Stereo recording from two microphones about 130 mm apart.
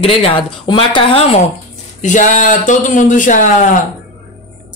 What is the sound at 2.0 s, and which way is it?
A man's voice, 75° left (ahead or behind).